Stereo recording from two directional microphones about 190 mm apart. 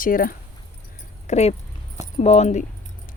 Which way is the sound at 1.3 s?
35° left (ahead or behind).